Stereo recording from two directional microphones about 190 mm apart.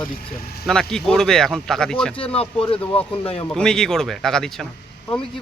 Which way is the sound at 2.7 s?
5° left (ahead or behind).